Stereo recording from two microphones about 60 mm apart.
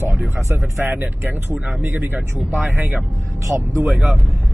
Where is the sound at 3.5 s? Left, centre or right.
Right.